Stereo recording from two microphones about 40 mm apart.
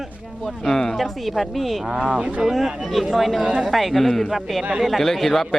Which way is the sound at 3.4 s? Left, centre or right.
Centre.